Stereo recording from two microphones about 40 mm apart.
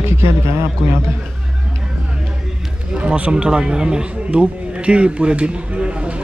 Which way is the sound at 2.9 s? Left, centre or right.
Right.